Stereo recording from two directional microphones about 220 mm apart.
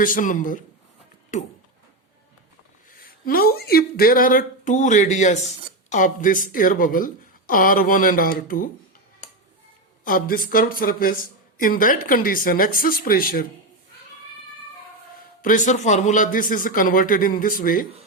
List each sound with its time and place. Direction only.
0.0 s speech: 35° left (ahead or behind)
3.2 s speech: 45° left (ahead or behind)
10.0 s speech: 40° left (ahead or behind)
15.4 s speech: 35° left (ahead or behind)